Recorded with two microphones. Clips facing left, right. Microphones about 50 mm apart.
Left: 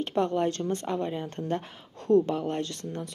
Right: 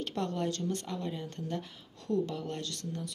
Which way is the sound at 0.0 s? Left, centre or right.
Left.